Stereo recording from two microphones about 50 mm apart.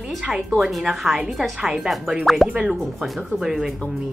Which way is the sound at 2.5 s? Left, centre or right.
Centre.